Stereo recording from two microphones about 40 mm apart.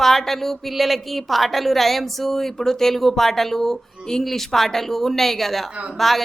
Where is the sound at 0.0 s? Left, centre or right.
Centre.